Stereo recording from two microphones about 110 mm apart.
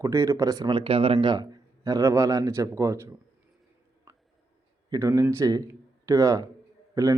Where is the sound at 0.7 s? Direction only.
55° right (ahead or behind); by 3.1 s 30° right (ahead or behind).